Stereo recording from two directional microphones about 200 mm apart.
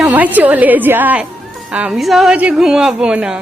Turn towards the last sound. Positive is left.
turn(degrees=-5)  # may be behind; listen again after turning